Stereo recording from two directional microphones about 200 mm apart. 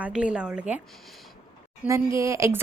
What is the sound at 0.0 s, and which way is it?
Speech, 5° right (ahead or behind).